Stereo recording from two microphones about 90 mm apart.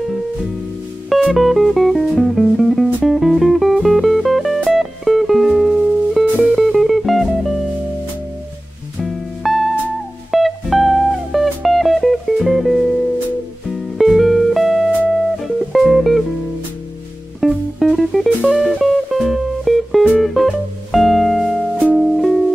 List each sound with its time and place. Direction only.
1.1 s music: centre (ahead or behind)
9.0 s music: centre (ahead or behind)
17.4 s music: centre (ahead or behind)